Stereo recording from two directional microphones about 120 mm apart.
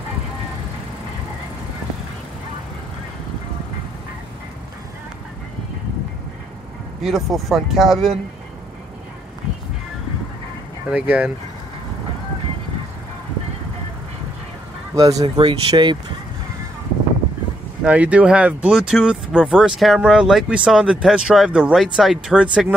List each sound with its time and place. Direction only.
7.0 s speech: centre (ahead or behind)
10.9 s speech: 10° right (ahead or behind)
15.0 s speech: 30° right (ahead or behind)
15.2 s speech: 45° right (ahead or behind)
17.8 s speech: 10° right (ahead or behind)